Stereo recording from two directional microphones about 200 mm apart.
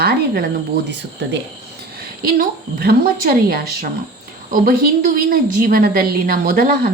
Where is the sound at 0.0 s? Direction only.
50° right (ahead or behind).